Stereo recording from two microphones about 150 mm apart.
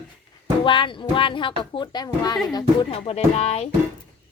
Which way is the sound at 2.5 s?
40° left (ahead or behind).